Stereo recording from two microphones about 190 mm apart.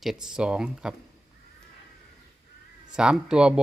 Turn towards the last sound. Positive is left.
turn(degrees=-5)  # may be behind; listen again after turning